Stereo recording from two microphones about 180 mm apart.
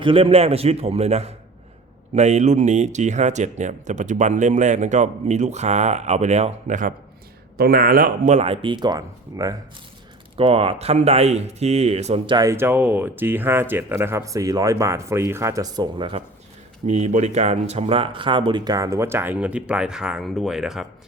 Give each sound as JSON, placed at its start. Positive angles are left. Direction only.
{"t": 0.0, "sound": "speech", "side_deg": -30}
{"t": 7.5, "sound": "speech", "side_deg": -55}
{"t": 10.3, "sound": "speech", "side_deg": -30}
{"t": 16.8, "sound": "speech", "side_deg": -40}